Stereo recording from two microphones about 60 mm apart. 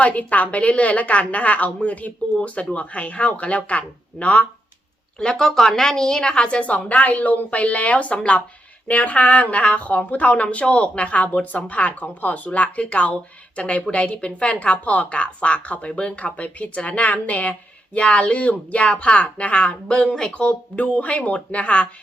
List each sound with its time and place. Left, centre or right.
0.0 s speech: left
5.2 s speech: centre